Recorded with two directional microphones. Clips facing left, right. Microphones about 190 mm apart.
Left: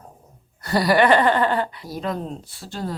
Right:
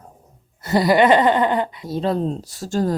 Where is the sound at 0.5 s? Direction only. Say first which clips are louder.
Right 2 dB; 20° right (ahead or behind).